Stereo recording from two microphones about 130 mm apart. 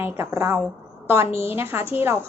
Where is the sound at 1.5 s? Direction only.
20° right (ahead or behind).